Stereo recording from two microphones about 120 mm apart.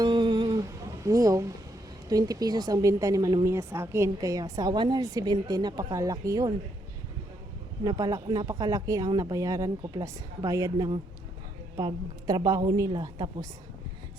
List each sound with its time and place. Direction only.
0.0 s music: 40° right (ahead or behind)
2.0 s a woman's voice: 30° right (ahead or behind)
7.9 s a woman's voice: 30° right (ahead or behind)